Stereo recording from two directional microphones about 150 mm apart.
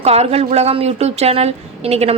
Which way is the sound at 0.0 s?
45° right (ahead or behind).